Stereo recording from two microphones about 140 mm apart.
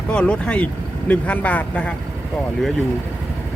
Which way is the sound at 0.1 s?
5° left (ahead or behind).